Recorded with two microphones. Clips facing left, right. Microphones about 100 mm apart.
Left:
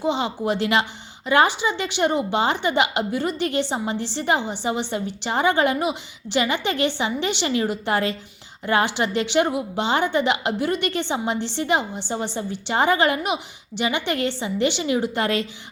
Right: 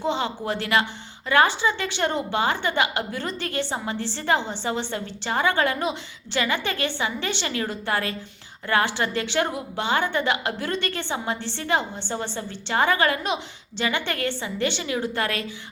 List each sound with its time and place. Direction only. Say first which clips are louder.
0.0 s a woman's voice: left 3 dB; 15° left (ahead or behind)